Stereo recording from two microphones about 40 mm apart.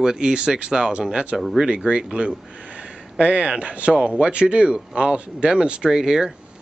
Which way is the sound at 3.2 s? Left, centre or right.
Right.